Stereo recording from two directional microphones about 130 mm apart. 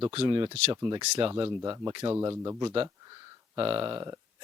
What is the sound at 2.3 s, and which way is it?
Speech, 25° right (ahead or behind).